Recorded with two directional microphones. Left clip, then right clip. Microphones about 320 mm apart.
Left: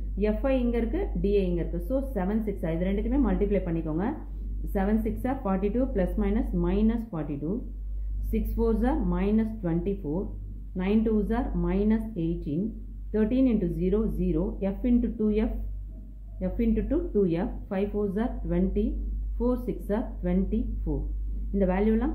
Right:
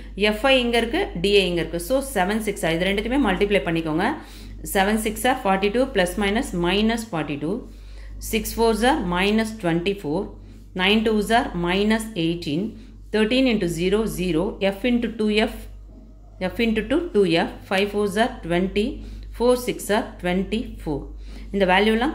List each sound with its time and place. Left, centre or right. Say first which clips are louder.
0.2 s a woman's voice: right 9 dB; centre
8.3 s a woman's voice: right 8 dB; centre
21.5 s a woman's voice: right 8 dB; centre